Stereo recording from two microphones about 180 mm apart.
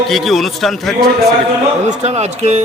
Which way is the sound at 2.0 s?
40° right (ahead or behind).